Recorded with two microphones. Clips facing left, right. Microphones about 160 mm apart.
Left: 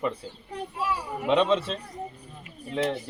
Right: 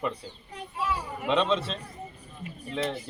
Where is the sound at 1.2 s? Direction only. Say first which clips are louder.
Left 3 dB; 5° left (ahead or behind).